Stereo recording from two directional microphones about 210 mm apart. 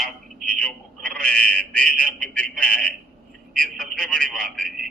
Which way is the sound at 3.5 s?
5° left (ahead or behind).